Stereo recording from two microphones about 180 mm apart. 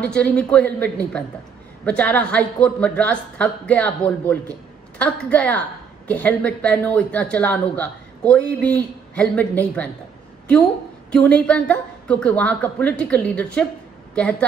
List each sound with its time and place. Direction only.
0.0 s speech: 5° left (ahead or behind)
11.1 s speech: 5° left (ahead or behind)